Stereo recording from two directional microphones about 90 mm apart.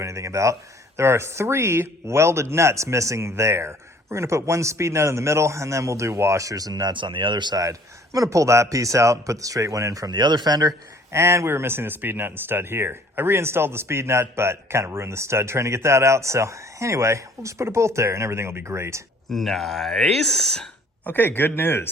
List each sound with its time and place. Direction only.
0.0 s a man's voice: 35° right (ahead or behind); by 7.6 s 55° right (ahead or behind)
7.6 s a man's voice: 40° right (ahead or behind)
10.2 s a man's voice: 55° right (ahead or behind); by 19.0 s 30° right (ahead or behind)
19.3 s speech: centre (ahead or behind)
21.0 s speech: 20° left (ahead or behind)